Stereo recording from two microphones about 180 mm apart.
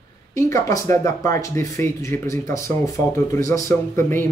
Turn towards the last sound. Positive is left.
turn(degrees=15)  # may be behind; listen again after turning